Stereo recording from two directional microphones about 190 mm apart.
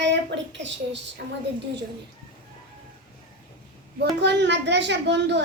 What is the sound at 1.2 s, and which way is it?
Speech, 55° right (ahead or behind).